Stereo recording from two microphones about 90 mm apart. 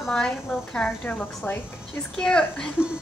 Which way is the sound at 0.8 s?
20° left (ahead or behind).